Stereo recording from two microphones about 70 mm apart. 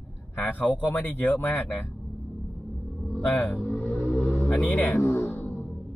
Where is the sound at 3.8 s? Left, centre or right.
Left.